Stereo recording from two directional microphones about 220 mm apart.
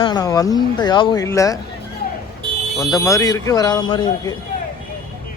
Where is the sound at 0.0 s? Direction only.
15° left (ahead or behind).